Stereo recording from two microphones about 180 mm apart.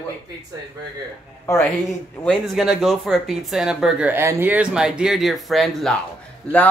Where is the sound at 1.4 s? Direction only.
10° left (ahead or behind).